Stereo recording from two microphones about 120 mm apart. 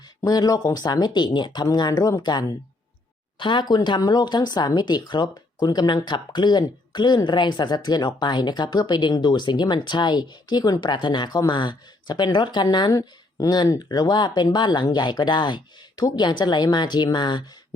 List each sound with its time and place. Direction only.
0.2 s speech: 35° left (ahead or behind)
12.9 s speech: 30° left (ahead or behind)